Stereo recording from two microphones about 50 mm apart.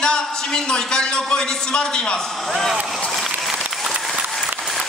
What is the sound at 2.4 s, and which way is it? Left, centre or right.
Speech, centre.